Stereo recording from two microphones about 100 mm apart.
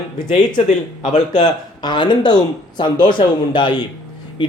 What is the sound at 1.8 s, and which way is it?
Speech, 50° left (ahead or behind).